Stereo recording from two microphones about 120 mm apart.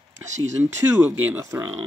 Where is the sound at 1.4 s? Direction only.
25° right (ahead or behind).